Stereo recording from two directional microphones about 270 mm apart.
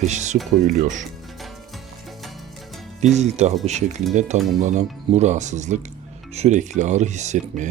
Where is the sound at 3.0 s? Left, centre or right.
Right.